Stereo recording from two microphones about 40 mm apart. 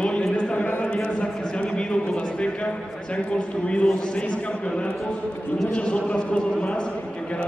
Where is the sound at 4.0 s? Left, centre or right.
Left.